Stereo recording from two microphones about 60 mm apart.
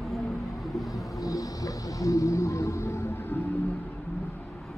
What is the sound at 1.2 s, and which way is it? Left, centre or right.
Music, left.